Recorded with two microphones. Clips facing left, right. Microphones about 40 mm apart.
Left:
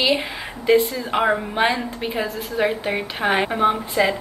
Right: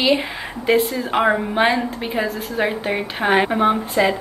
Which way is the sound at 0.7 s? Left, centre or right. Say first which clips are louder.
Right 1 dB; centre.